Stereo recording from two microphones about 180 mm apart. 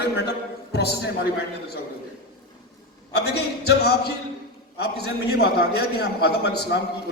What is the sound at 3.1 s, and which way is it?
A man's voice, 65° left (ahead or behind).